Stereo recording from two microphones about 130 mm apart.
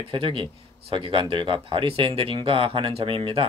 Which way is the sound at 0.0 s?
45° right (ahead or behind).